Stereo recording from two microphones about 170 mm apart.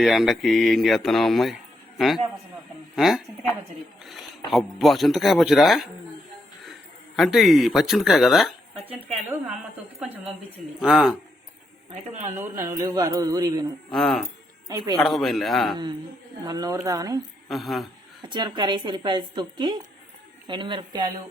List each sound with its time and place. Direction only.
0.0 s speech: centre (ahead or behind)
4.5 s speech: centre (ahead or behind)
7.2 s speech: centre (ahead or behind)
8.9 s speech: 35° right (ahead or behind)
10.8 s speech: 5° right (ahead or behind)
12.4 s a woman's voice: 15° right (ahead or behind)
13.9 s speech: centre (ahead or behind)
16.4 s a woman's voice: 20° right (ahead or behind)
17.5 s speech: centre (ahead or behind)
18.2 s a woman's voice: 25° right (ahead or behind)